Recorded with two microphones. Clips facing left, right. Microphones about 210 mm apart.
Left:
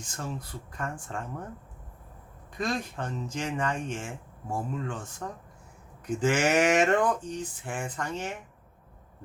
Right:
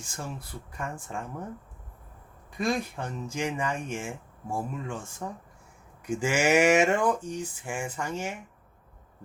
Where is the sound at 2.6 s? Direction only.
10° right (ahead or behind).